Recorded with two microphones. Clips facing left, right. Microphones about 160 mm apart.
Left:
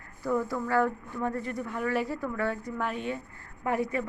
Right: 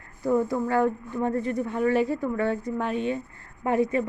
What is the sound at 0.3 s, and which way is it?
A woman's voice, 25° right (ahead or behind).